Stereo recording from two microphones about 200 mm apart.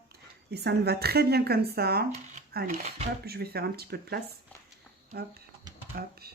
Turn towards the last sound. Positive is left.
turn(degrees=-50)  # may be behind; listen again after turning